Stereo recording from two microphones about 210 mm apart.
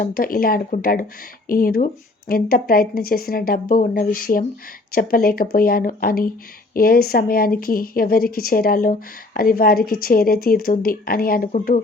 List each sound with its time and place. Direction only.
0.0 s speech: 45° left (ahead or behind)